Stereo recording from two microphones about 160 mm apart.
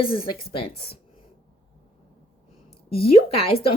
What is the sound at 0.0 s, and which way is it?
Speech, 35° left (ahead or behind).